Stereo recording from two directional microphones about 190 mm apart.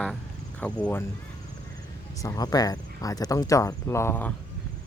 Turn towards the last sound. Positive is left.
turn(degrees=10)  # may be behind; listen again after turning